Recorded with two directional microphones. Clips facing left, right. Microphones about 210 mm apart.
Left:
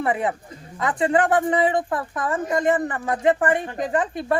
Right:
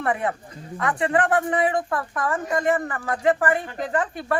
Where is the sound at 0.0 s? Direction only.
15° left (ahead or behind).